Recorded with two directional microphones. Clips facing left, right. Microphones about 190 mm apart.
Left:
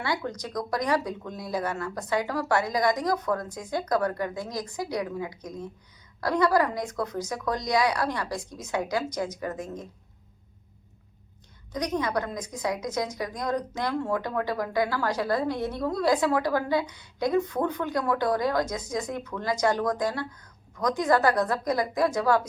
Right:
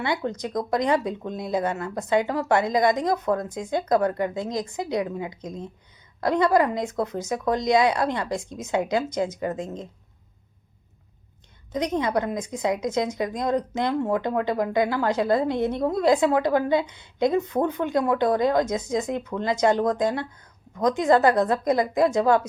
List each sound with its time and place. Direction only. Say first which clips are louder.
0.0 s a woman's voice: right 4 dB; 25° right (ahead or behind)
11.7 s a woman's voice: right 4 dB; 25° right (ahead or behind)